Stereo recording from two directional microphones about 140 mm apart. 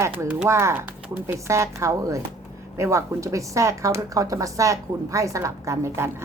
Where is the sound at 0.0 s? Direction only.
15° right (ahead or behind).